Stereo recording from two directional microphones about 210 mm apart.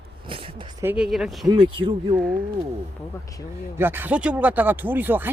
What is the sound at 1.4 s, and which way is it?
Speech, 25° right (ahead or behind).